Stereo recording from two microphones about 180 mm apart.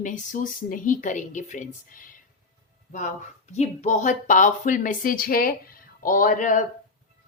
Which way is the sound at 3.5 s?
40° left (ahead or behind).